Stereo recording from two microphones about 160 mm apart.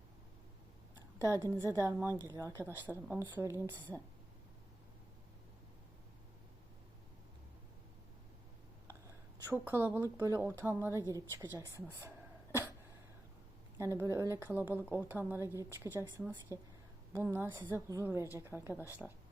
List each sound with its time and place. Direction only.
1.2 s a woman's voice: 20° right (ahead or behind)
8.9 s a sound: 15° right (ahead or behind)
10.6 s a woman's voice: 15° right (ahead or behind)
13.7 s a woman's voice: 15° right (ahead or behind)